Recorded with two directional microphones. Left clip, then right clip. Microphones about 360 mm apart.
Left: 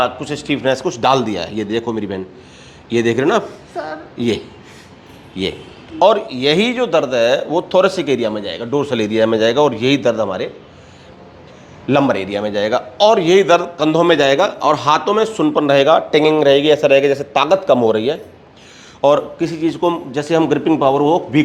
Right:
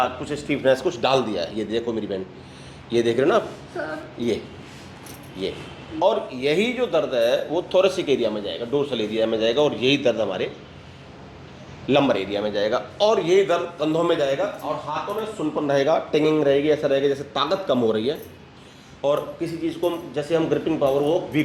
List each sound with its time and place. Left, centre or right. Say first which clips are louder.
0.0 s a man's voice: left 6 dB; left
6.0 s a man's voice: left 8 dB; left
11.9 s a man's voice: left 5 dB; left
15.6 s a man's voice: left 8 dB; centre
19.0 s a man's voice: left 9 dB; left